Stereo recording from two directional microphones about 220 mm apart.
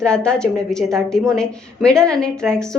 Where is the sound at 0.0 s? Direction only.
5° left (ahead or behind).